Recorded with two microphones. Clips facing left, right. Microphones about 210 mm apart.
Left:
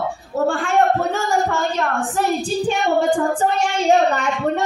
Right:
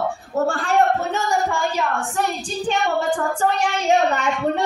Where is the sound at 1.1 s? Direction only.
10° right (ahead or behind).